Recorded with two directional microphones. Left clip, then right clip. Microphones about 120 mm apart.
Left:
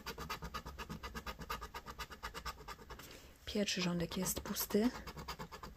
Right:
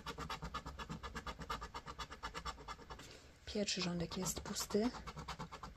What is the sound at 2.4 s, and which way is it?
Scratch, 30° left (ahead or behind).